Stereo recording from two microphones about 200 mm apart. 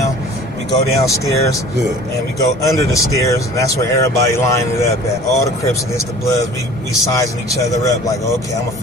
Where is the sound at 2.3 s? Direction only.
15° left (ahead or behind).